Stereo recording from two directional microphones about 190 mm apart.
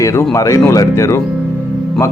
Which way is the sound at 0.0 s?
15° left (ahead or behind).